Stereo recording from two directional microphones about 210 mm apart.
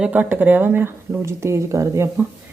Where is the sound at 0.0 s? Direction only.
5° right (ahead or behind).